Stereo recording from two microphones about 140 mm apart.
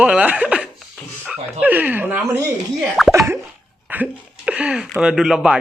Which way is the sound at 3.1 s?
20° right (ahead or behind).